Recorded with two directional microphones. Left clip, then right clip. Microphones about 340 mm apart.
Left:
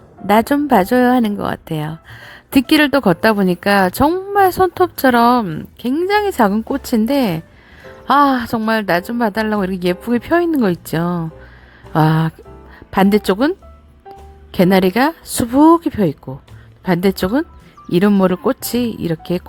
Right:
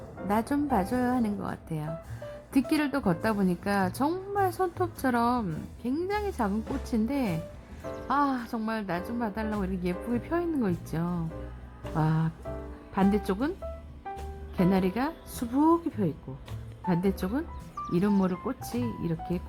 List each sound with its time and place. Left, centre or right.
0.3 s a woman's voice: left
14.5 s a woman's voice: left